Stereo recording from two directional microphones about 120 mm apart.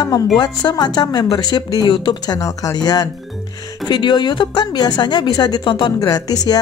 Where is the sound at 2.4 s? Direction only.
25° left (ahead or behind).